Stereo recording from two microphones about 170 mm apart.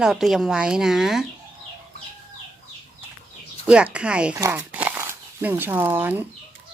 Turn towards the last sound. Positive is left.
turn(degrees=-10)  # may be behind; listen again after turning